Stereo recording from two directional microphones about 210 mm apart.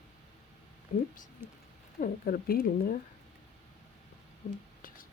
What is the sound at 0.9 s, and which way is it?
Speech, 40° left (ahead or behind).